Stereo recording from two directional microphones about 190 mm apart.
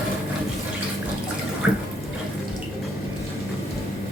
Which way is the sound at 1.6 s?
5° right (ahead or behind).